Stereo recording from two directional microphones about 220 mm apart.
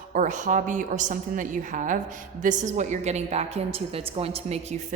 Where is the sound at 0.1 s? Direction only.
35° right (ahead or behind).